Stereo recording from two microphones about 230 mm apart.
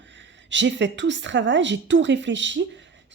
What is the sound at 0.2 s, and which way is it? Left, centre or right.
Speech, right.